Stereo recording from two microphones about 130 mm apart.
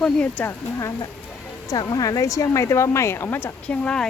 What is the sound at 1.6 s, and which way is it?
Speech, 30° left (ahead or behind).